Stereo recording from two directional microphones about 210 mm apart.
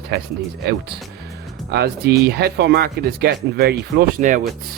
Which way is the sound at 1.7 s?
50° right (ahead or behind).